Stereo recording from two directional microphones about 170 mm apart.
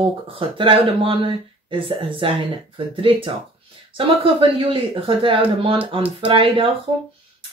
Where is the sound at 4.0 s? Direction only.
30° right (ahead or behind).